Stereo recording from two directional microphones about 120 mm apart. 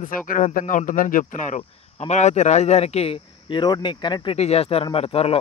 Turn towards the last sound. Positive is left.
turn(degrees=55)  # may be behind; listen again after turning